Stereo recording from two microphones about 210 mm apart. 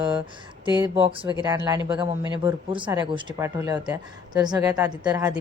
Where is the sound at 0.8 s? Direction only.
25° right (ahead or behind).